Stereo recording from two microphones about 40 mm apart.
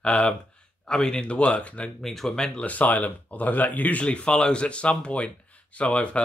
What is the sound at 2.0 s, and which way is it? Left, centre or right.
Speech, centre.